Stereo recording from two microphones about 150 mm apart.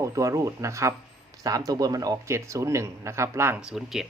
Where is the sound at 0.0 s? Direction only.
20° right (ahead or behind).